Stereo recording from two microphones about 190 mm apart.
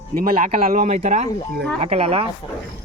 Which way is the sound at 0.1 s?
45° right (ahead or behind).